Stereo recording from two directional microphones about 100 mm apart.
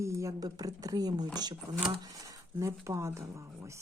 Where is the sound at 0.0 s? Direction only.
30° right (ahead or behind).